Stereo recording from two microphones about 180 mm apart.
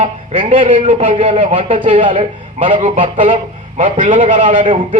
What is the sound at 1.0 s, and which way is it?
Speech, 30° right (ahead or behind).